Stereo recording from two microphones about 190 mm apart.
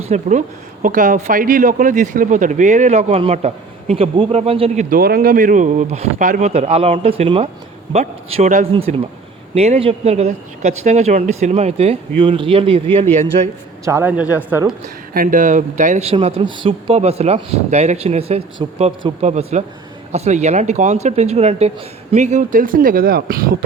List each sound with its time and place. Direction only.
0.1 s speech: 40° right (ahead or behind)
4.9 s speech: 50° right (ahead or behind); by 13.5 s 30° right (ahead or behind)
13.8 s speech: 10° right (ahead or behind)
15.1 s speech: 45° right (ahead or behind)